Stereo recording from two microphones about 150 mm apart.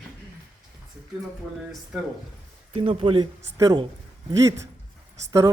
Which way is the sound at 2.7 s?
40° right (ahead or behind).